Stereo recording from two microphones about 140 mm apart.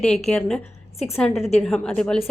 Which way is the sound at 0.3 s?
5° left (ahead or behind).